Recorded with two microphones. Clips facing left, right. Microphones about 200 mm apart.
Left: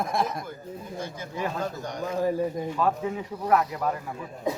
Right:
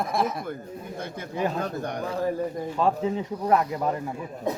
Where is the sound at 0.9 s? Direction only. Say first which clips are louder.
Right 3 dB; 55° right (ahead or behind).